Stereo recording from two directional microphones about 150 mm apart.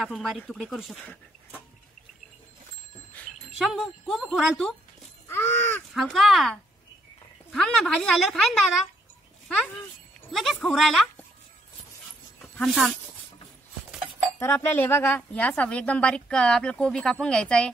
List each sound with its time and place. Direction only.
0.0 s speech: centre (ahead or behind)
3.5 s speech: centre (ahead or behind)
5.3 s a woman's voice: 15° left (ahead or behind)
5.9 s speech: centre (ahead or behind)
10.3 s speech: centre (ahead or behind)
12.5 s speech: 5° left (ahead or behind)
14.4 s a woman's voice: 15° left (ahead or behind)